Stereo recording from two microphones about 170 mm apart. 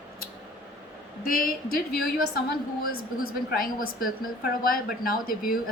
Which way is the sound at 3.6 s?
55° left (ahead or behind).